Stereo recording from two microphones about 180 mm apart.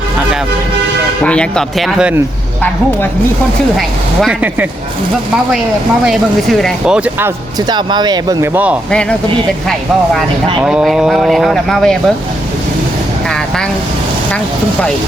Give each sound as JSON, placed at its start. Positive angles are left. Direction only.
{"t": 1.2, "sound": "speech", "side_deg": 5}
{"t": 3.8, "sound": "speech", "side_deg": 0}
{"t": 6.1, "sound": "speech", "side_deg": 0}
{"t": 7.7, "sound": "speech", "side_deg": -25}
{"t": 8.9, "sound": "speech", "side_deg": 5}
{"t": 10.6, "sound": "speech", "side_deg": -5}